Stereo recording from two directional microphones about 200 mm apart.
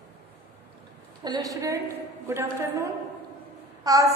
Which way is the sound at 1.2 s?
20° right (ahead or behind).